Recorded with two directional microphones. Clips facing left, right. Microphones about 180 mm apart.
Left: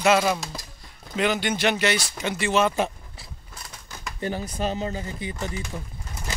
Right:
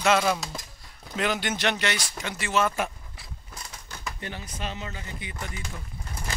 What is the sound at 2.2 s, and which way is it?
Speech, 20° left (ahead or behind).